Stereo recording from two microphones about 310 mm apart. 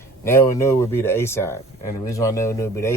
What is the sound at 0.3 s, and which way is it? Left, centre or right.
Speech, centre.